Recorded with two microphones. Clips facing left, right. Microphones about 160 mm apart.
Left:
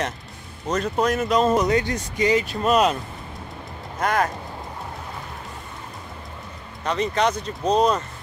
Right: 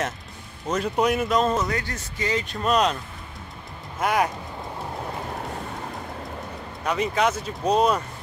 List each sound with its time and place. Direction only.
0.7 s speech: 10° right (ahead or behind)
1.3 s speech: centre (ahead or behind)
1.6 s speech: 20° left (ahead or behind)
2.6 s speech: 5° left (ahead or behind)
4.0 s speech: 10° right (ahead or behind)
6.8 s speech: 10° right (ahead or behind)